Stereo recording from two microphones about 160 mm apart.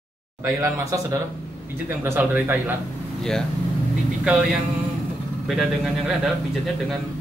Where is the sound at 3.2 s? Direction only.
5° left (ahead or behind).